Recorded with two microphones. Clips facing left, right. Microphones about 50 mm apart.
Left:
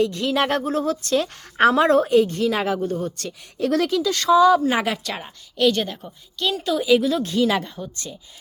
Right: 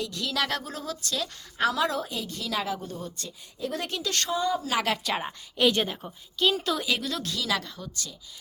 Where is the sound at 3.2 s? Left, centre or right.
Left.